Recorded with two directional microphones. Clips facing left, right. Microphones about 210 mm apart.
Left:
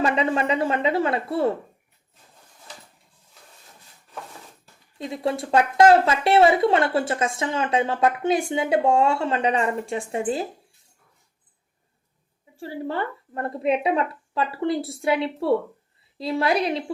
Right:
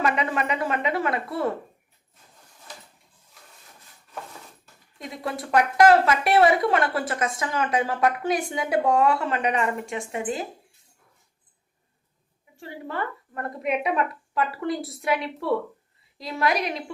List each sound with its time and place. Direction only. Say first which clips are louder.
0.0 s speech: left 3 dB; 30° left (ahead or behind)
4.9 s speech: left 6 dB; 25° left (ahead or behind)
12.5 s speech: left 4 dB; 30° left (ahead or behind)